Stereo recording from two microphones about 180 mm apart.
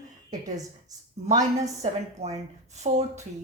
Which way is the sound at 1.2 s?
35° right (ahead or behind).